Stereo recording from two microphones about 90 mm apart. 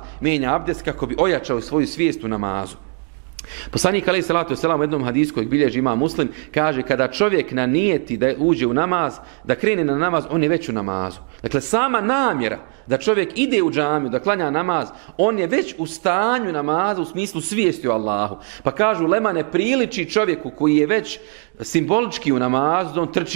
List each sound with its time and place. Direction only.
0.2 s a man's voice: 15° right (ahead or behind)
3.7 s a man's voice: 10° right (ahead or behind)